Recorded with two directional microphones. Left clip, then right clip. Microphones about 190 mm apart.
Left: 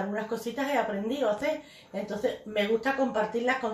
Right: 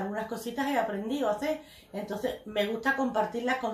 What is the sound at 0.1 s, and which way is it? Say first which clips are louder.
Speech: left 2 dB; centre (ahead or behind).